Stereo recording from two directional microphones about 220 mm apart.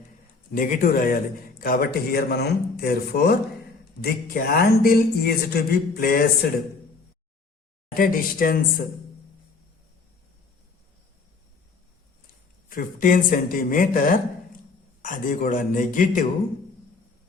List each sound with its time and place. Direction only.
0.5 s a man's voice: 40° left (ahead or behind)
7.9 s speech: 40° left (ahead or behind)
12.6 s speech: 40° left (ahead or behind)